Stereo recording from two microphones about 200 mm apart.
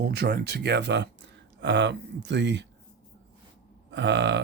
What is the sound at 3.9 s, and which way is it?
Speech, 60° right (ahead or behind).